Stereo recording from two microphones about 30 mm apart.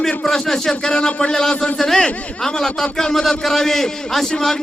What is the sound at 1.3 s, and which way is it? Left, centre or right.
A man's voice, centre.